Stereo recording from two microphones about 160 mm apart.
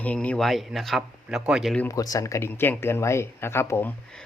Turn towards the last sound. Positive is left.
turn(degrees=15)  # may be behind; listen again after turning